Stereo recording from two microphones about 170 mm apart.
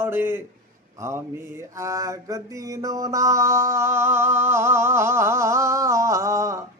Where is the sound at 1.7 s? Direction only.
20° right (ahead or behind).